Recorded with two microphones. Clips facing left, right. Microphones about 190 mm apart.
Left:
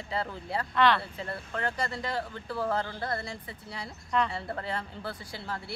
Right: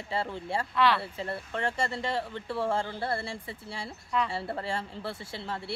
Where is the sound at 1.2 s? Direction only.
25° right (ahead or behind).